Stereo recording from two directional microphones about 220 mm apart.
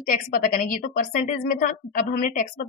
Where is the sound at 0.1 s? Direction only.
40° left (ahead or behind).